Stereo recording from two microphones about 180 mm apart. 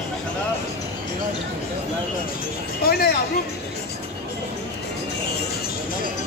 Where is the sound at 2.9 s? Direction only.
60° left (ahead or behind).